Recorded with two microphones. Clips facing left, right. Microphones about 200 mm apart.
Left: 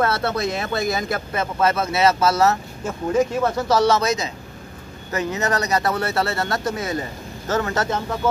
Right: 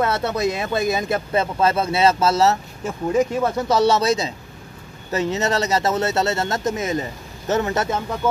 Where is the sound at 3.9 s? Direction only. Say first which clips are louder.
Right 1 dB; 30° right (ahead or behind).